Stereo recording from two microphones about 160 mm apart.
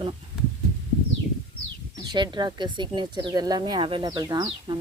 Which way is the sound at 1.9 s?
30° right (ahead or behind).